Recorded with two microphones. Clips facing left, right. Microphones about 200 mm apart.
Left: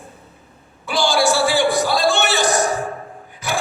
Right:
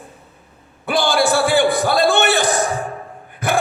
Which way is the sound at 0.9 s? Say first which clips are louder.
Right 1 dB; 55° right (ahead or behind).